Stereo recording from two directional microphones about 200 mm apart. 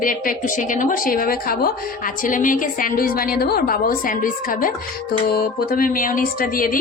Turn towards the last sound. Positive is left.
turn(degrees=45)  # may be behind; listen again after turning